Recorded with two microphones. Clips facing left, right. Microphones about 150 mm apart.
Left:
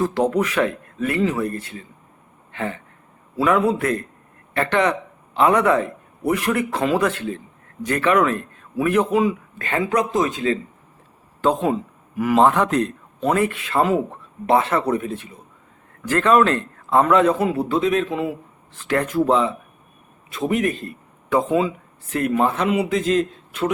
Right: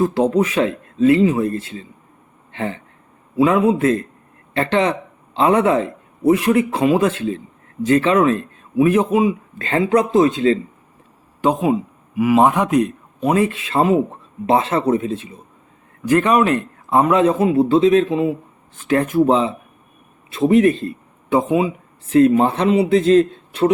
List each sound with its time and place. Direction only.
0.0 s a man's voice: 20° right (ahead or behind)
2.5 s a sound: 25° right (ahead or behind)
3.3 s a man's voice: 20° right (ahead or behind)
11.4 s a man's voice: 10° right (ahead or behind)
20.5 s a man's voice: 30° right (ahead or behind)
21.2 s a man's voice: 20° right (ahead or behind)